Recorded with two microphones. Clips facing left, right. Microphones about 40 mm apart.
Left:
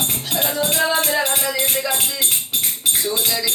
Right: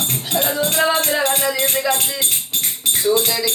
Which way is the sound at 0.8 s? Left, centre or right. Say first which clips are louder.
Right 1 dB; centre.